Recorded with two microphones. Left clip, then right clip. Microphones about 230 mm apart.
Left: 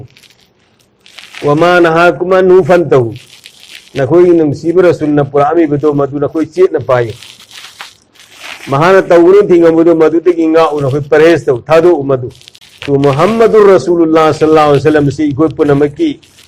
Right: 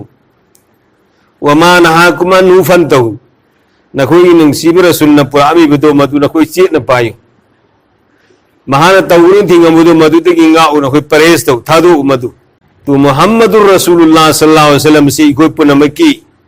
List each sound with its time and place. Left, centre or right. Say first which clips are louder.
1.5 s a man's voice: right 3 dB; right
8.7 s a man's voice: right 2 dB; right
12.9 s a man's voice: right 3 dB; right